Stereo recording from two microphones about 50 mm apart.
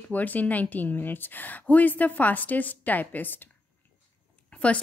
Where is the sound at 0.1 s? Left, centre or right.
Left.